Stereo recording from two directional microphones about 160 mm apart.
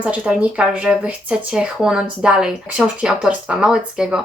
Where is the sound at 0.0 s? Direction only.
5° right (ahead or behind).